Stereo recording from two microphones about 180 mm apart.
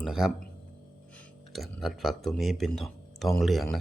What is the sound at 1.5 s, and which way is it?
Speech, centre (ahead or behind).